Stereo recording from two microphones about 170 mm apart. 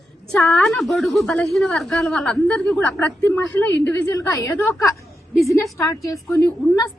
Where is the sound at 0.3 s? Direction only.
5° left (ahead or behind).